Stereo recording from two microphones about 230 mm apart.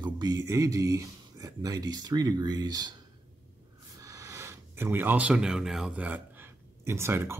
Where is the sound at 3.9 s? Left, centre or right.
Centre.